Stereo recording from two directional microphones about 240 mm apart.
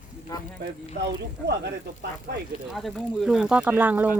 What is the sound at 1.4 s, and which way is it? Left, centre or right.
Speech, right.